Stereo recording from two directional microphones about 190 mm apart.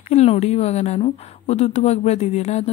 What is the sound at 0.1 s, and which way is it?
Speech, 35° left (ahead or behind).